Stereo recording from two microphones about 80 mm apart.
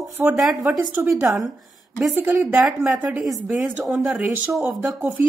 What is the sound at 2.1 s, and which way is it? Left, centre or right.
Speech, right.